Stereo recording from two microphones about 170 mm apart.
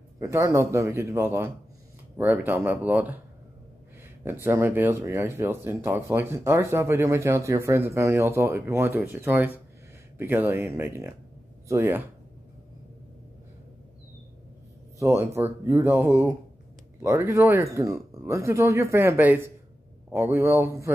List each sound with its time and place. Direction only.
0.2 s speech: 15° right (ahead or behind)
4.2 s speech: 15° right (ahead or behind)
15.0 s speech: 15° right (ahead or behind)